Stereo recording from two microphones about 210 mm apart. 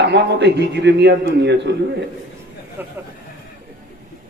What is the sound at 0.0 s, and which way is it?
A man's voice, 55° right (ahead or behind).